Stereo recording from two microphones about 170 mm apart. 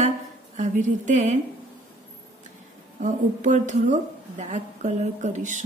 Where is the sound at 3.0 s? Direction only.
45° right (ahead or behind).